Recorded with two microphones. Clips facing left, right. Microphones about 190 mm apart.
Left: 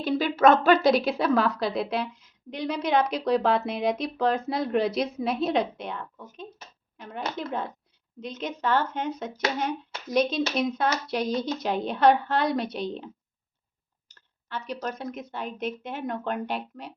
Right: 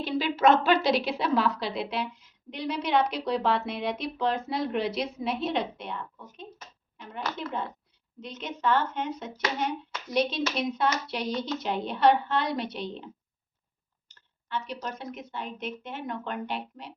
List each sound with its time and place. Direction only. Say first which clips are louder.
0.0 s speech: left 3 dB; 45° left (ahead or behind)
6.9 s a sound: left 4 dB; 45° left (ahead or behind)
7.4 s speech: left 2 dB; 45° left (ahead or behind)
14.5 s speech: left 2 dB; 40° left (ahead or behind)